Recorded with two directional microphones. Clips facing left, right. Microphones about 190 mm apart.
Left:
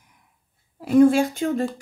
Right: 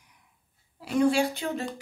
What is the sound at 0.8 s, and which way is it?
Speech, 50° left (ahead or behind).